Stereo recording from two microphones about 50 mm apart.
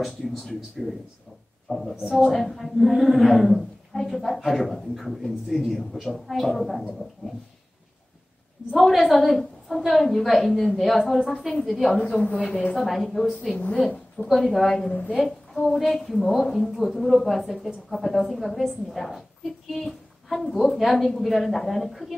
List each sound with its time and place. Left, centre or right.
0.0 s a woman's voice: centre
8.7 s a woman's voice: centre
12.1 s a woman's voice: left
12.7 s a woman's voice: centre
14.9 s a woman's voice: left
15.2 s a woman's voice: centre